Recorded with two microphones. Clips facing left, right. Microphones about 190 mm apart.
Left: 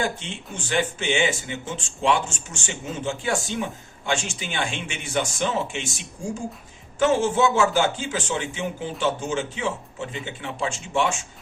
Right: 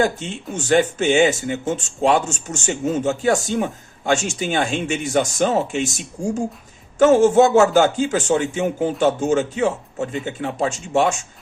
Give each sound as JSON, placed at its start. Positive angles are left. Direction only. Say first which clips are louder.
{"t": 0.0, "sound": "speech", "louder": "right 7 dB", "side_deg": -40}